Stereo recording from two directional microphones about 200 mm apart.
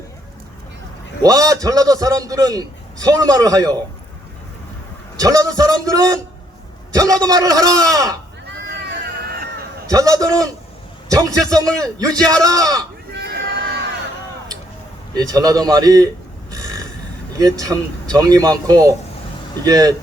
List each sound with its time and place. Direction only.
1.2 s a man's voice: 20° right (ahead or behind)
5.1 s a man's voice: 15° right (ahead or behind)
8.7 s vehicle: 60° right (ahead or behind)
9.9 s a man's voice: 15° right (ahead or behind)
13.1 s a sound: 60° right (ahead or behind)
15.1 s a man's voice: 20° right (ahead or behind)
16.5 s burping: 20° right (ahead or behind)
17.3 s a man's voice: 20° right (ahead or behind)